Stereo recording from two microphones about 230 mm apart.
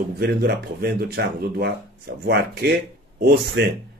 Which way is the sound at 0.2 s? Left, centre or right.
Right.